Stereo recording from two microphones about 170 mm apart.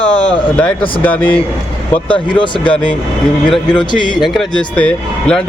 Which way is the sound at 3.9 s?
25° left (ahead or behind).